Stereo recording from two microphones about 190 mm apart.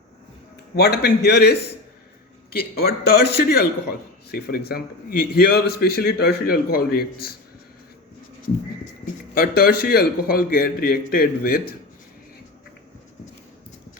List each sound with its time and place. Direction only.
0.8 s a man's voice: 60° left (ahead or behind)
9.3 s a man's voice: 50° left (ahead or behind)